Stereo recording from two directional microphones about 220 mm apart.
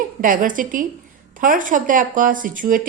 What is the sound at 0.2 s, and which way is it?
A woman's voice, 40° right (ahead or behind).